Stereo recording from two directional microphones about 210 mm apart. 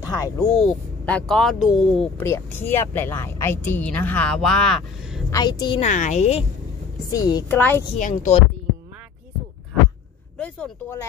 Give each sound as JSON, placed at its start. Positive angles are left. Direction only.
{"t": 0.0, "sound": "speech", "side_deg": 15}
{"t": 0.6, "sound": "speech", "side_deg": 5}
{"t": 2.1, "sound": "speech", "side_deg": 10}
{"t": 5.3, "sound": "a woman's voice", "side_deg": 20}
{"t": 5.8, "sound": "a woman's voice", "side_deg": 35}
{"t": 7.1, "sound": "speech", "side_deg": 15}
{"t": 8.0, "sound": "a woman's voice", "side_deg": 35}
{"t": 10.3, "sound": "a sound", "side_deg": 5}